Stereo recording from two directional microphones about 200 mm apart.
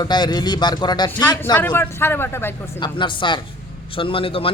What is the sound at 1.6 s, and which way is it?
A woman's voice, 10° left (ahead or behind).